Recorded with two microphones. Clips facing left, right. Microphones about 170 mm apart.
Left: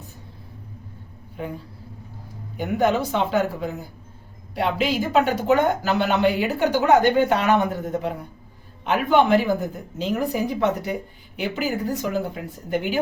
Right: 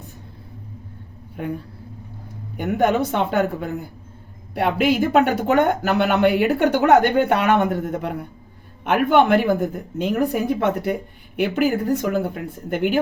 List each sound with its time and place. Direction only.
2.6 s speech: 60° right (ahead or behind)